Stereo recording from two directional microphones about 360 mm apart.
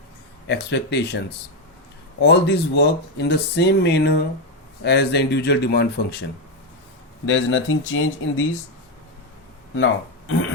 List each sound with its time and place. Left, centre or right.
0.4 s speech: left
2.2 s speech: left
7.3 s speech: left
9.7 s speech: left